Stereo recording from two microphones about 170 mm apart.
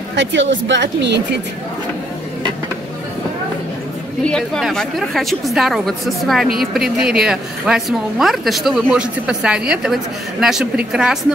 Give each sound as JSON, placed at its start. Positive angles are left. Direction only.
{"t": 0.1, "sound": "speech", "side_deg": -90}
{"t": 4.3, "sound": "a woman's voice", "side_deg": 0}